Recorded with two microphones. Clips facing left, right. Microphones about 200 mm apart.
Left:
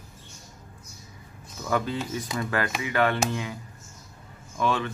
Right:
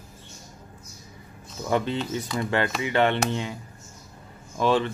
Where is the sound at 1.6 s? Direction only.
25° right (ahead or behind).